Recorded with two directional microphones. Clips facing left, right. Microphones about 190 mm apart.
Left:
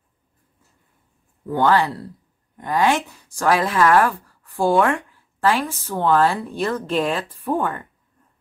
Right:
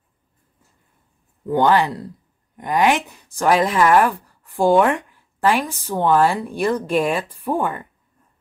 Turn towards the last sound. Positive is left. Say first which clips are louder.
# right 1 dB
turn(degrees=-15)  # may be behind; listen again after turning